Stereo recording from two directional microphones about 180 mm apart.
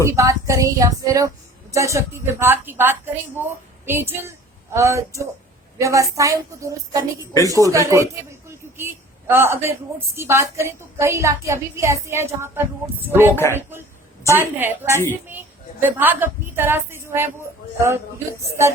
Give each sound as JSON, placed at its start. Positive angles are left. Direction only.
{"t": 0.0, "sound": "a woman's voice", "side_deg": -15}
{"t": 13.3, "sound": "speech", "side_deg": 10}
{"t": 14.3, "sound": "a woman's voice", "side_deg": -10}